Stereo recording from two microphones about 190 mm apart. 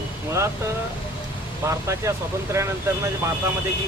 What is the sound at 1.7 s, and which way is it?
Speech, 15° right (ahead or behind).